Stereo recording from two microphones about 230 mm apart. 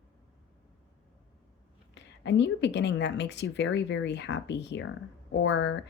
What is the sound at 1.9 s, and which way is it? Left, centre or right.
A woman's voice, left.